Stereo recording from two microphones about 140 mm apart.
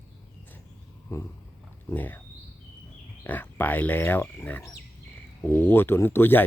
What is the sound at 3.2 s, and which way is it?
A man's voice, 15° left (ahead or behind).